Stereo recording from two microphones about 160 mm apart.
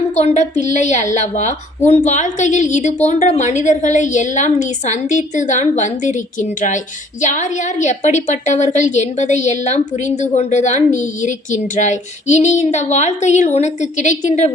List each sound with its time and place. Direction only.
0.2 s a woman's voice: 45° left (ahead or behind)